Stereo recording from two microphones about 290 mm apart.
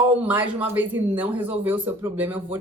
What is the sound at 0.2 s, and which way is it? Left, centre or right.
Speech, centre.